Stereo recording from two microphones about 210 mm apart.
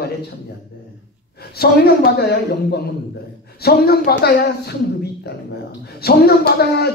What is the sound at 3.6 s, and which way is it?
A man's voice, 45° left (ahead or behind).